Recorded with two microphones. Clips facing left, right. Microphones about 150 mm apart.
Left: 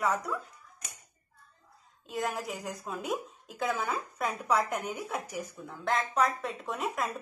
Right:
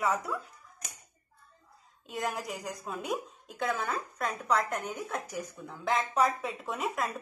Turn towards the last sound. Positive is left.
turn(degrees=0)  # may be behind; listen again after turning